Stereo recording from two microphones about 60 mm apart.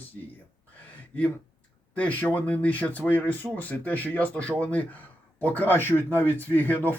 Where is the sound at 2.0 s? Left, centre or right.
Left.